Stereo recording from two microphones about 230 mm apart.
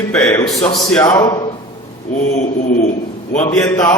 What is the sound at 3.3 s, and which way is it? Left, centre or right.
Speech, centre.